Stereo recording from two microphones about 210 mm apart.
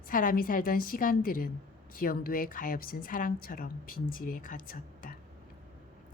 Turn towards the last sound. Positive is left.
turn(degrees=40)  # may be behind; listen again after turning